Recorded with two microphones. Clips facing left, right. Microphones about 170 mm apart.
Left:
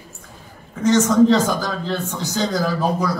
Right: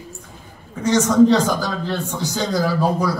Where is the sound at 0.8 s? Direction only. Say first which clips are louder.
Even; 10° right (ahead or behind).